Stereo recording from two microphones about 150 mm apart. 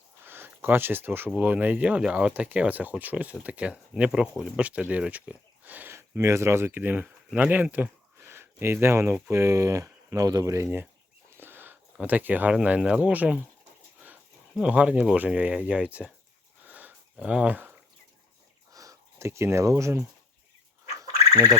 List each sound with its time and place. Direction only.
0.3 s speech: 15° right (ahead or behind)
16.6 s sniff: 10° right (ahead or behind)
18.7 s speech: 20° right (ahead or behind)
21.3 s speech: 20° right (ahead or behind)